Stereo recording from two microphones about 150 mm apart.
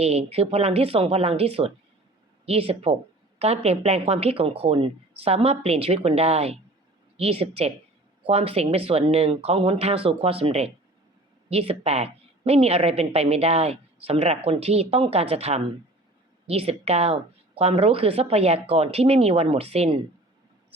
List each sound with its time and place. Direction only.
0.0 s a woman's voice: 45° right (ahead or behind)